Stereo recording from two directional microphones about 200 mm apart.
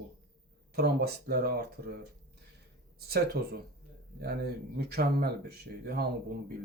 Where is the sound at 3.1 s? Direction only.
50° right (ahead or behind).